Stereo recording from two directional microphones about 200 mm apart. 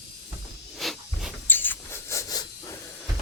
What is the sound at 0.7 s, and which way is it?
Hiss, centre (ahead or behind).